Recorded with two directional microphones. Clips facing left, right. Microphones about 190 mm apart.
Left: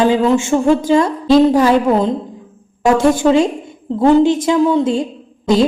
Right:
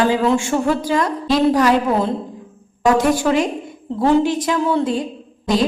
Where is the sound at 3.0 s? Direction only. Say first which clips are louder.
Left 5 dB; 25° left (ahead or behind).